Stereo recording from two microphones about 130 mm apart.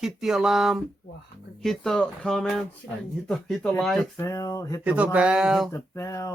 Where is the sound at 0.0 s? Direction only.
5° right (ahead or behind).